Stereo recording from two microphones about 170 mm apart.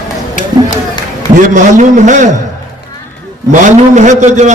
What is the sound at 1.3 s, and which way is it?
Speech, 50° right (ahead or behind).